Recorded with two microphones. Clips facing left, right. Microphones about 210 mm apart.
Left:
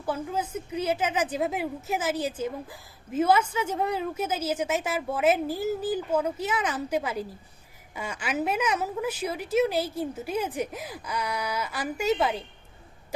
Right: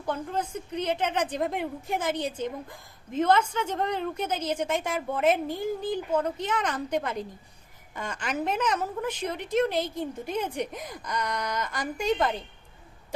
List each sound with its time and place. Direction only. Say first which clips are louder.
0.0 s a woman's voice: left 1 dB; 5° left (ahead or behind)